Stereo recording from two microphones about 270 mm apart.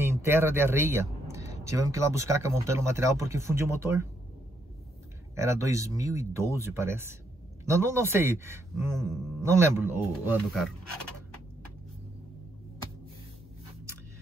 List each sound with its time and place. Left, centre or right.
0.0 s speech: centre
5.3 s speech: centre